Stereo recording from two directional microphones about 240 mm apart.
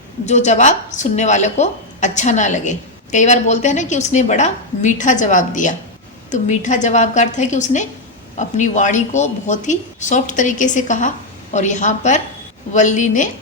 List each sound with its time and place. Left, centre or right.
0.3 s a woman's voice: left